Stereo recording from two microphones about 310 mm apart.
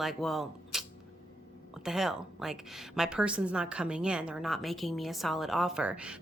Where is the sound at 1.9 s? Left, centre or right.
Centre.